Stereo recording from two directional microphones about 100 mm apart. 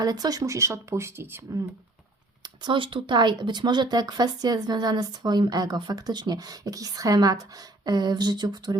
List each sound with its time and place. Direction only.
0.0 s speech: 40° right (ahead or behind); by 1.4 s 25° right (ahead or behind)
2.4 s speech: 50° right (ahead or behind)